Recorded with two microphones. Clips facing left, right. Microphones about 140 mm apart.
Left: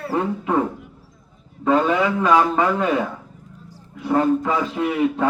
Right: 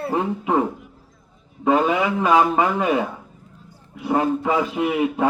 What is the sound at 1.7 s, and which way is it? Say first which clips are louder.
A man's voice: even; 15° right (ahead or behind).